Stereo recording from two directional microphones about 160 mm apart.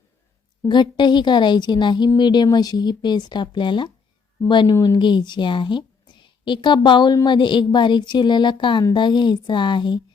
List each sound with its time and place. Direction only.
0.7 s a woman's voice: 30° left (ahead or behind)